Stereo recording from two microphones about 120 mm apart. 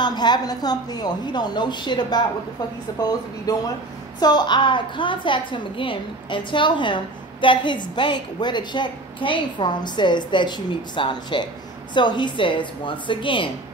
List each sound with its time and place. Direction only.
0.0 s a woman's voice: 35° left (ahead or behind)